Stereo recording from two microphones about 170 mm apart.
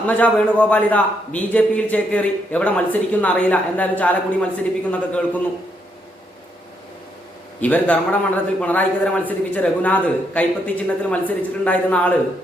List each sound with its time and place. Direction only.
0.1 s a man's voice: 10° left (ahead or behind)
7.6 s a man's voice: 10° left (ahead or behind)